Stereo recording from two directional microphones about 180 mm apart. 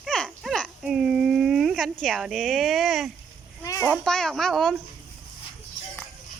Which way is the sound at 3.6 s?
15° left (ahead or behind).